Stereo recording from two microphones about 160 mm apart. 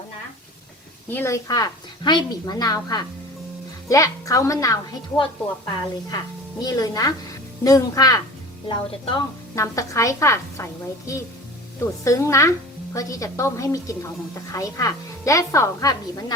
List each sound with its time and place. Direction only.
1.1 s speech: 15° left (ahead or behind)
6.6 s speech: 20° left (ahead or behind)
9.6 s speech: 20° left (ahead or behind)